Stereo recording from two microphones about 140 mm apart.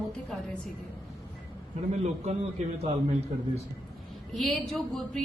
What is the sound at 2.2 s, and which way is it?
Speech, 50° right (ahead or behind).